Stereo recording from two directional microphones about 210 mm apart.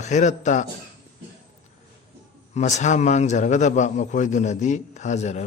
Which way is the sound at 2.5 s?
35° left (ahead or behind).